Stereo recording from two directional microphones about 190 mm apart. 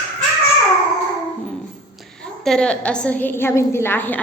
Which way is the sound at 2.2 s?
5° left (ahead or behind).